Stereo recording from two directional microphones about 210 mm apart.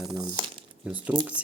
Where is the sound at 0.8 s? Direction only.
5° right (ahead or behind).